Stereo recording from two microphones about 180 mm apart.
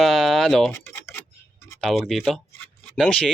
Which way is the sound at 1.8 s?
Centre (ahead or behind).